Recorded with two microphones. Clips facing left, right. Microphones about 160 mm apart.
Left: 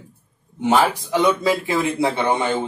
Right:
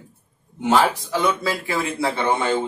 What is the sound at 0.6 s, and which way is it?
A man's voice, 15° left (ahead or behind).